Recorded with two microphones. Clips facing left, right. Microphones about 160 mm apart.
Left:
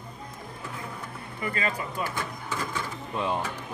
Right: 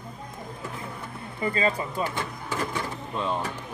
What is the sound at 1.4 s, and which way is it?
Speech, 30° right (ahead or behind).